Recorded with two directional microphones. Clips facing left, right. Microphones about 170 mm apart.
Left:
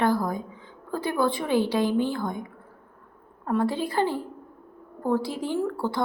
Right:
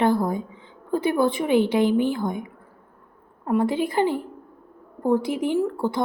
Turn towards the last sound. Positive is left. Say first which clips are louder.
# right 3 dB
turn(degrees=-20)  # may be behind; listen again after turning